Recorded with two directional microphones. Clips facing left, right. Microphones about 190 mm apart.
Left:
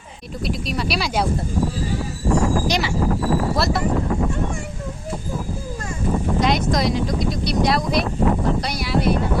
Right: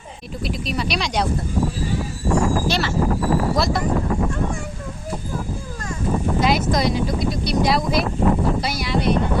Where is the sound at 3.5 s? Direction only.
Centre (ahead or behind).